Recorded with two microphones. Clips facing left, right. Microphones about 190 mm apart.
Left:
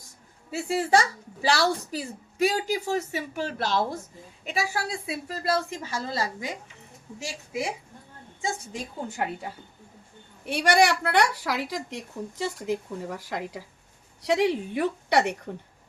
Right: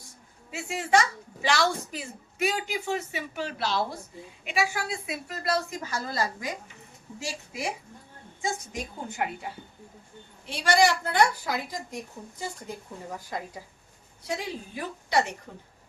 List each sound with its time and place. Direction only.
0.5 s a woman's voice: 35° left (ahead or behind)
8.4 s a woman's voice: 30° left (ahead or behind)
10.4 s a woman's voice: 60° left (ahead or behind); by 13.6 s 90° left
14.2 s a woman's voice: 75° left (ahead or behind)